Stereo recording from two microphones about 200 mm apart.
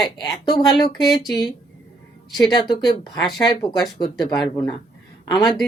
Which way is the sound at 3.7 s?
Centre (ahead or behind).